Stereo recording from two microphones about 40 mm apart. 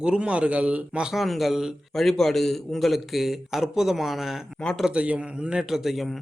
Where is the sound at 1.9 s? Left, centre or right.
Centre.